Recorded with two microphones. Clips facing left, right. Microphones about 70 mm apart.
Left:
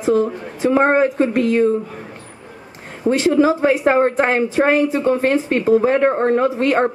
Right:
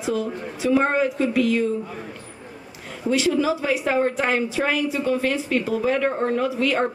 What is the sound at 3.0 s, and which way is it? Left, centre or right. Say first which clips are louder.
A woman's voice: left 6 dB; left.